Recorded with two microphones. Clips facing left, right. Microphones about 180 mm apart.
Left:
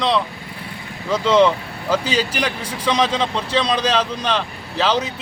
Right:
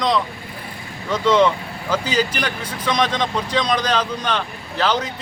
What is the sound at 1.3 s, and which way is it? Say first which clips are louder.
Speech: left 1 dB; 30° left (ahead or behind).